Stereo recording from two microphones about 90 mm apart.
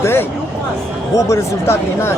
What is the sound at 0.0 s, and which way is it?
Speech, 25° left (ahead or behind).